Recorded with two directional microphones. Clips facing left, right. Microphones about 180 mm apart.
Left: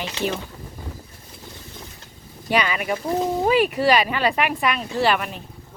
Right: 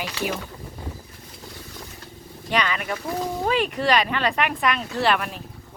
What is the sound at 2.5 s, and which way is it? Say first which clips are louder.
Speech: left 3 dB; 10° left (ahead or behind).